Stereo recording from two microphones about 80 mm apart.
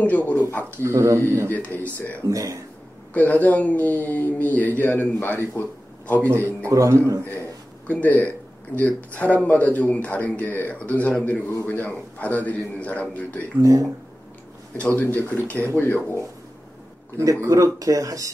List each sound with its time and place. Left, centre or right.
0.0 s speech: centre
0.8 s speech: right
1.5 s speech: centre
2.2 s speech: right
3.1 s speech: centre
6.3 s a man's voice: right
7.9 s speech: left
13.6 s speech: right
15.0 s speech: centre
17.4 s speech: right